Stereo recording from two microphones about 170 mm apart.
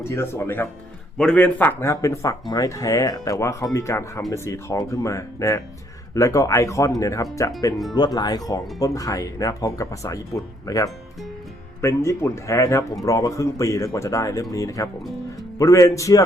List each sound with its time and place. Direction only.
0.0 s speech: 15° left (ahead or behind)